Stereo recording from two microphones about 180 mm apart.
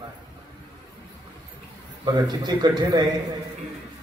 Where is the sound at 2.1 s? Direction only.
25° right (ahead or behind).